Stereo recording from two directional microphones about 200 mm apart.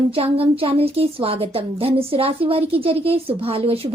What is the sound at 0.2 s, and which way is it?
A woman's voice, 30° right (ahead or behind).